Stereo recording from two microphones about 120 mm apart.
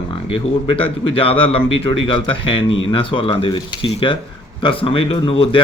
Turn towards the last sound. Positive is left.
turn(degrees=50)  # may be behind; listen again after turning